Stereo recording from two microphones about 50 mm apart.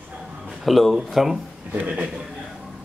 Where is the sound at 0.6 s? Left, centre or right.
Centre.